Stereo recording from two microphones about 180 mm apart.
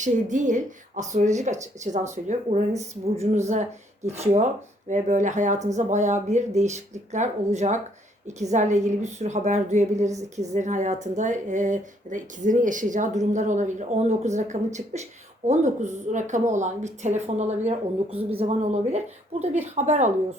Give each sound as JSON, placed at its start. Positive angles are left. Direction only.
{"t": 0.0, "sound": "speech", "side_deg": -45}